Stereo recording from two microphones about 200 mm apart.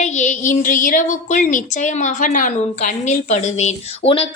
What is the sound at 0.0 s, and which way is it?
A woman's voice, 35° left (ahead or behind).